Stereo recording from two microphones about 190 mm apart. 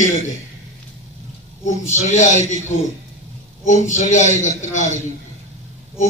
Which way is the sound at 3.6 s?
40° left (ahead or behind).